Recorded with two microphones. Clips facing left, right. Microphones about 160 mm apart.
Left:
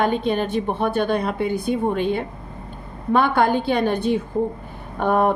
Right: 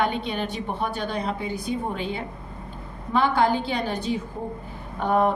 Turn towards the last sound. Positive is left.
turn(degrees=55)  # may be behind; listen again after turning